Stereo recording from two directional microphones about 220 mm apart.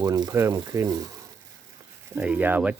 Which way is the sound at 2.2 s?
5° right (ahead or behind).